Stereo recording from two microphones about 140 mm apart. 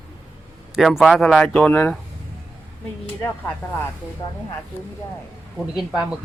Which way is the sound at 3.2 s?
15° left (ahead or behind).